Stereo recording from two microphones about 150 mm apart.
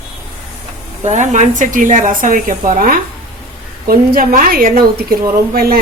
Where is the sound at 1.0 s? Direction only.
50° right (ahead or behind).